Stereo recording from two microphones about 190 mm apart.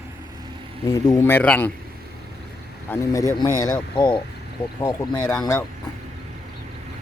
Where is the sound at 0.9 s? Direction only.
20° left (ahead or behind).